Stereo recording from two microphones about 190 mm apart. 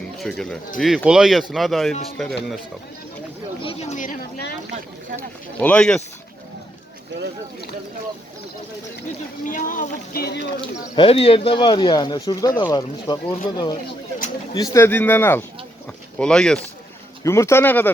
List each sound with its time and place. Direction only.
0.2 s speech: centre (ahead or behind)
3.6 s speech: 30° left (ahead or behind)
5.5 s speech: 5° left (ahead or behind)
9.4 s speech: 45° left (ahead or behind); by 10.5 s 60° left (ahead or behind)
10.6 s speech: 25° left (ahead or behind); by 16.6 s 5° left (ahead or behind)
17.2 s speech: 15° left (ahead or behind)